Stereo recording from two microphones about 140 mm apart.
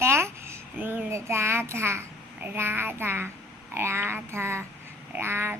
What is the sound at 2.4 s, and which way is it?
Child singing, 15° right (ahead or behind).